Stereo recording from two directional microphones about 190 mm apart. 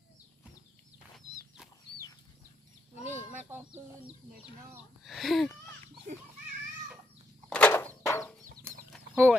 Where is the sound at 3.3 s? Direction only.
10° right (ahead or behind).